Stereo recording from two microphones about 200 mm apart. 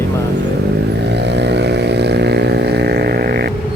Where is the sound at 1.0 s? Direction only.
60° right (ahead or behind).